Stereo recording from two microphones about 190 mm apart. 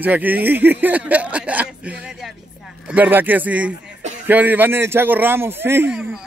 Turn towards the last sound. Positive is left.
turn(degrees=-10)  # may be behind; listen again after turning